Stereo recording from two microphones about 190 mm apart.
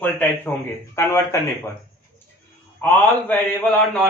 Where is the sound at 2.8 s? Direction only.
10° left (ahead or behind).